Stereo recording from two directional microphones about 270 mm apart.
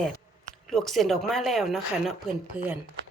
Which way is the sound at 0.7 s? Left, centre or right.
Centre.